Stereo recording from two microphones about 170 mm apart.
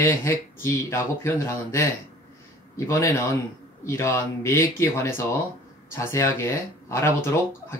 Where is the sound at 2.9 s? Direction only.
20° left (ahead or behind).